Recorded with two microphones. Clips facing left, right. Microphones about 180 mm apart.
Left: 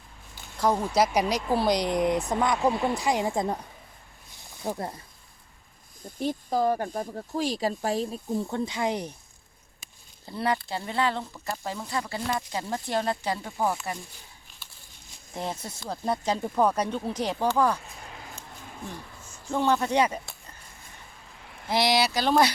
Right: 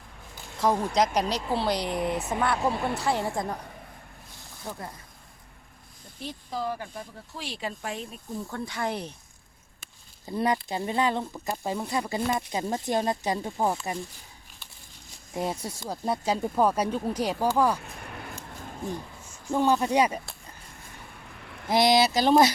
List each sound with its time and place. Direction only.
0.6 s speech: centre (ahead or behind); by 3.4 s 15° left (ahead or behind)
4.6 s speech: 35° left (ahead or behind)
6.1 s speech: 45° left (ahead or behind); by 9.1 s 15° left (ahead or behind)
10.2 s speech: 20° right (ahead or behind)
15.4 s speech: 10° right (ahead or behind)
18.2 s a sound: 60° right (ahead or behind)
19.5 s speech: 10° right (ahead or behind)
21.3 s a sound: 65° right (ahead or behind)
21.7 s speech: 20° right (ahead or behind)